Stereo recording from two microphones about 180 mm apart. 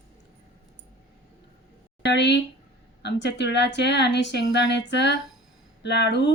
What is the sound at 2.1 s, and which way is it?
Speech, 75° left (ahead or behind).